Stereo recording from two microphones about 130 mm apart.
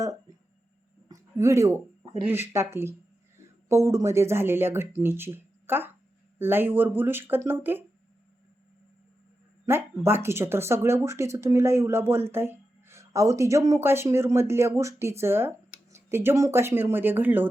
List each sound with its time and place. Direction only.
1.0 s a sound: 25° right (ahead or behind)
2.2 s speech: 15° right (ahead or behind)
9.6 s speech: 20° right (ahead or behind)